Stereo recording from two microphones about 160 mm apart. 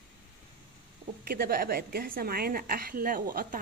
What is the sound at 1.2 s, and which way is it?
A woman's voice, 65° right (ahead or behind).